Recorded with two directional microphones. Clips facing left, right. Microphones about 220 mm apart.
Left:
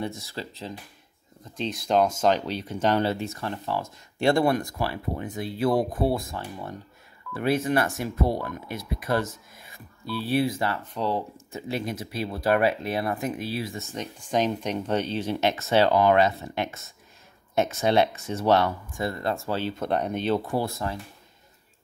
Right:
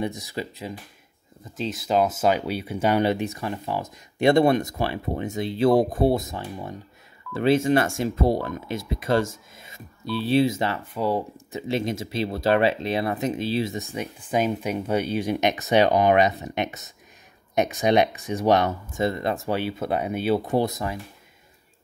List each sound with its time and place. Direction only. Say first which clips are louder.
0.0 s speech: right 4 dB; 15° right (ahead or behind)
1.4 s speech: right 1 dB; centre (ahead or behind); by 10.8 s 20° right (ahead or behind)
10.9 s speech: right 3 dB; 10° right (ahead or behind)
11.6 s speech: right 4 dB; 25° right (ahead or behind)
14.3 s speech: right 1 dB; 5° right (ahead or behind)
19.7 s speech: right 1 dB; 5° right (ahead or behind)
20.4 s speech: right 4 dB; 20° right (ahead or behind)